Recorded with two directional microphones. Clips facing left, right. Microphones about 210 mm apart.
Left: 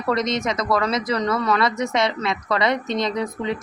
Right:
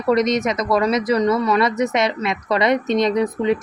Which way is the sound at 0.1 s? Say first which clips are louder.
Right 5 dB; 15° right (ahead or behind).